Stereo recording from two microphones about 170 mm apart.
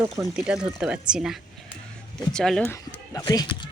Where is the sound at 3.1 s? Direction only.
25° left (ahead or behind).